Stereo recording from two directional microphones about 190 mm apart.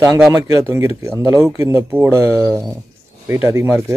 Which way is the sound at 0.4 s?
15° right (ahead or behind).